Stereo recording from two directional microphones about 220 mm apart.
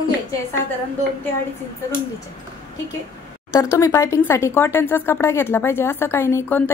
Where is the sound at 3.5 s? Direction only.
15° left (ahead or behind).